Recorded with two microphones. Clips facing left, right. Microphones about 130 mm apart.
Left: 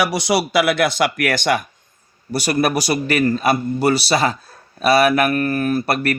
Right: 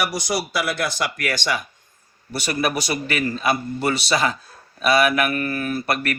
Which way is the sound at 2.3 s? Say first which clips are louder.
Left 5 dB; 40° left (ahead or behind).